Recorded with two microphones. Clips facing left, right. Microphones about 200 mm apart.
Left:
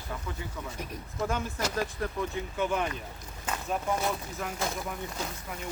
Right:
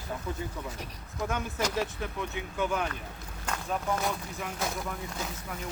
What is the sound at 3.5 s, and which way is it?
Speech, 5° left (ahead or behind).